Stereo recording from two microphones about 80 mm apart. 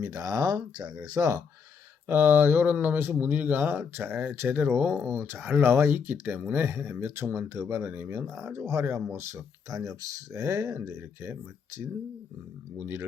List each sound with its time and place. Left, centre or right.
0.0 s speech: right
2.0 s speech: right
8.3 s speech: centre
8.5 s speech: right
12.7 s speech: right